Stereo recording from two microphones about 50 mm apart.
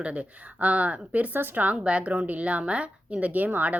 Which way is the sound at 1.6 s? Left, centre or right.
Right.